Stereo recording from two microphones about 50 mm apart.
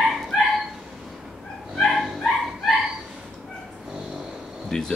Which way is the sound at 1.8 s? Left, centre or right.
Centre.